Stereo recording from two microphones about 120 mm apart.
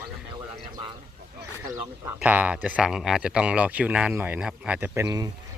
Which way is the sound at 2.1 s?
15° right (ahead or behind).